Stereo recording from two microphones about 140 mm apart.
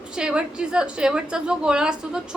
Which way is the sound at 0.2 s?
5° right (ahead or behind).